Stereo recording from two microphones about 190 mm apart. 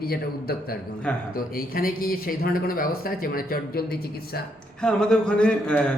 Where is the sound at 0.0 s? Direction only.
50° left (ahead or behind).